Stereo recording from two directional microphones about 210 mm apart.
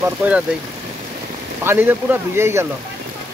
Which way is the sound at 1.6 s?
10° right (ahead or behind).